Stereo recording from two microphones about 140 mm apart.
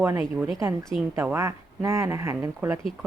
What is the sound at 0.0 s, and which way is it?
Speech, 20° right (ahead or behind).